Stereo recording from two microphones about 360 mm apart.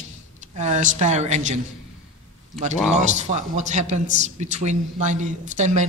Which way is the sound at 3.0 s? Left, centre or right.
Centre.